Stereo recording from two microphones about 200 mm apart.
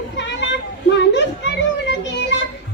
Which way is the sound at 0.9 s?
60° left (ahead or behind).